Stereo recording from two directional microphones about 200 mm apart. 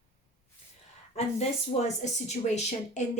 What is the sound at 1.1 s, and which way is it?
Speech, 30° left (ahead or behind).